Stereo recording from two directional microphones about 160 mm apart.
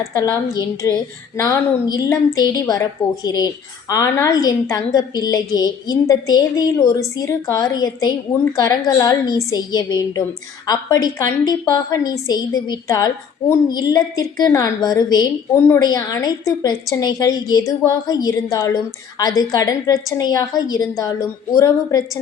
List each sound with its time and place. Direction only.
0.0 s a woman's voice: 20° left (ahead or behind)